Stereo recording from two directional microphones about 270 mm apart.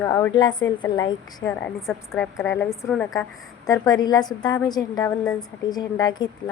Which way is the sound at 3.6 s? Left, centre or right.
Centre.